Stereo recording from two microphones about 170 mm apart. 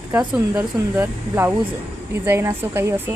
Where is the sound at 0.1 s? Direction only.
10° right (ahead or behind).